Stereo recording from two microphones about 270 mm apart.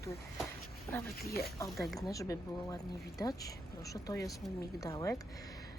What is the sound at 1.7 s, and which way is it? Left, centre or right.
Speech, centre.